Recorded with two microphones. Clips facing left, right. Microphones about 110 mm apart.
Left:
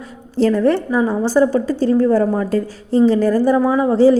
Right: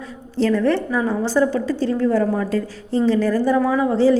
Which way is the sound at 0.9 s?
20° left (ahead or behind).